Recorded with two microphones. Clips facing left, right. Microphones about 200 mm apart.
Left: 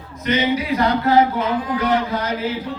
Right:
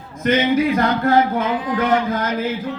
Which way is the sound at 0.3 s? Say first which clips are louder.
Right 3 dB; 50° right (ahead or behind).